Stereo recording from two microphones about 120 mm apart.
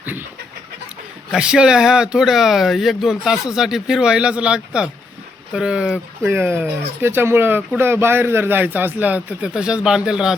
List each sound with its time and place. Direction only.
0.0 s a sound: 15° right (ahead or behind)
1.3 s a man's voice: 5° right (ahead or behind)
6.2 s a man's voice: 20° right (ahead or behind)